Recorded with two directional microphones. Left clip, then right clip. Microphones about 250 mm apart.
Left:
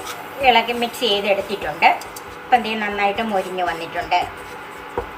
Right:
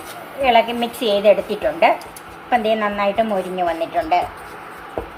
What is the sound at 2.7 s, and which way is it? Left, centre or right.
Speech, centre.